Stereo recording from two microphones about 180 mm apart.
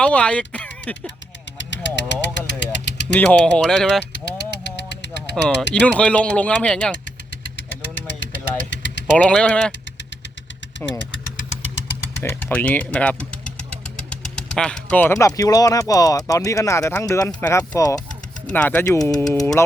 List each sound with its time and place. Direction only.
0.0 s speech: 5° left (ahead or behind)
1.5 s vehicle: 85° left
3.1 s speech: 5° left (ahead or behind)
4.1 s vehicle: 75° left (ahead or behind)
5.8 s speech: 5° left (ahead or behind)
7.4 s vehicle: 90° left
9.1 s speech: 5° left (ahead or behind)
12.2 s speech: 10° left (ahead or behind)
18.5 s speech: 10° left (ahead or behind)
18.9 s speech: 20° left (ahead or behind)